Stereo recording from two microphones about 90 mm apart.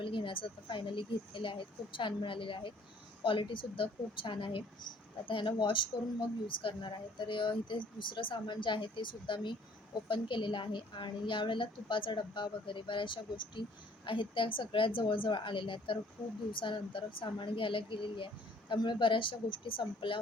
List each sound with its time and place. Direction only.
0.0 s a woman's voice: 65° left (ahead or behind)